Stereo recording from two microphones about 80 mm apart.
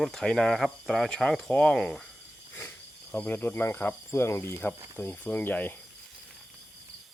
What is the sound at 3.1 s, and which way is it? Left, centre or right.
Speech, left.